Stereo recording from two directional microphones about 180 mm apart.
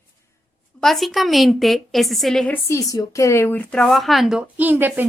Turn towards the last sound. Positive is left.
turn(degrees=-10)  # may be behind; listen again after turning